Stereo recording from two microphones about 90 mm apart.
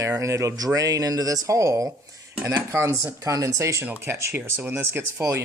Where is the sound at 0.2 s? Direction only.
35° right (ahead or behind).